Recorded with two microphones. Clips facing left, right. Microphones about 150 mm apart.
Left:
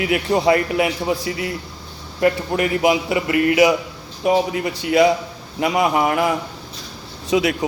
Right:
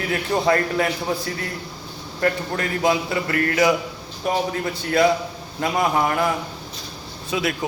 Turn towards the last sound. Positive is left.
turn(degrees=20)  # may be behind; listen again after turning